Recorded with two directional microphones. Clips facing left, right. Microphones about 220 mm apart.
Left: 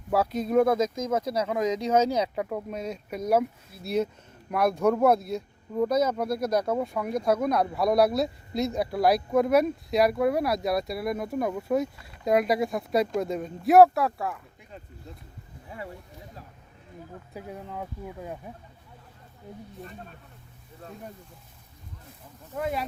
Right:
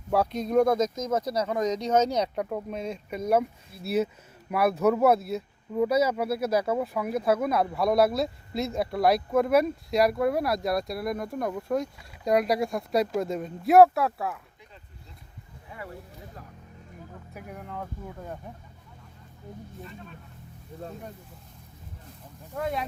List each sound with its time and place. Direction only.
0.1 s speech: 5° left (ahead or behind)
17.3 s speech: 15° left (ahead or behind)
22.5 s speech: 5° left (ahead or behind)